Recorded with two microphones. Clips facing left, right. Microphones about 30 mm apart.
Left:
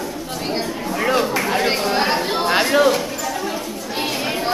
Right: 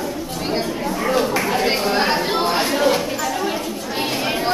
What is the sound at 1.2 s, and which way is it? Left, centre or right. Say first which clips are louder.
Chatter: even; centre.